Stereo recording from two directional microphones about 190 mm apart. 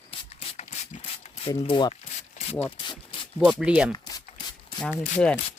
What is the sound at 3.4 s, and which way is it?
Speech, 5° right (ahead or behind).